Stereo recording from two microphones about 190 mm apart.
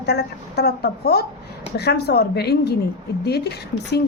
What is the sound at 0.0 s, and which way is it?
A woman's voice, 60° left (ahead or behind).